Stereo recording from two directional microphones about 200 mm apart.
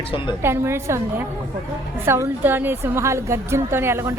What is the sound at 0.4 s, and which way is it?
Speech, 10° right (ahead or behind).